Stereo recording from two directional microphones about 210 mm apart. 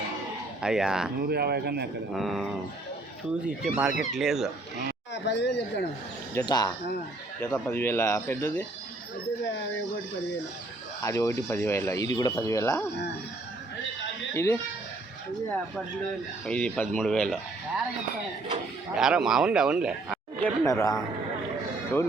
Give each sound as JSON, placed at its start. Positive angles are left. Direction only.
{"t": 0.6, "sound": "speech", "side_deg": 0}
{"t": 1.2, "sound": "speech", "side_deg": -50}
{"t": 2.1, "sound": "speech", "side_deg": 0}
{"t": 5.1, "sound": "speech", "side_deg": 55}
{"t": 6.3, "sound": "speech", "side_deg": 20}
{"t": 11.0, "sound": "speech", "side_deg": 15}
{"t": 14.3, "sound": "speech", "side_deg": 10}
{"t": 18.9, "sound": "speech", "side_deg": -5}
{"t": 20.4, "sound": "speech", "side_deg": 15}